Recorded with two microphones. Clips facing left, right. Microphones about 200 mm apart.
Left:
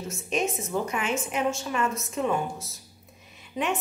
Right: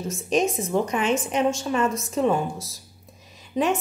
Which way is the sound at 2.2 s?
35° right (ahead or behind).